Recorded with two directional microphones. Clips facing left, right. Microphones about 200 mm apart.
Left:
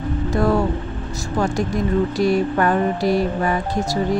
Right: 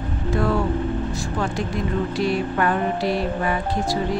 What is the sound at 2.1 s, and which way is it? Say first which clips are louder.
Speech: left 4 dB; 40° left (ahead or behind).